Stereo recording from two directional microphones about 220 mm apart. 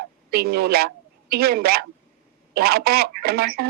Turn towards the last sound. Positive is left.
turn(degrees=-45)  # may be behind; listen again after turning